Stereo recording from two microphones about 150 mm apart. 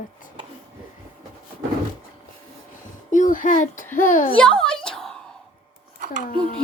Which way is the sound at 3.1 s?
60° left (ahead or behind).